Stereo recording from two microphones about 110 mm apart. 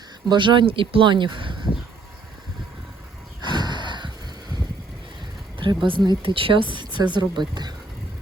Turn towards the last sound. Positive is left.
turn(degrees=-40)  # may be behind; listen again after turning